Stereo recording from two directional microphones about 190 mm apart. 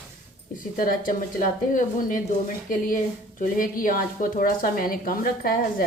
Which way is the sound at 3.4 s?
45° left (ahead or behind).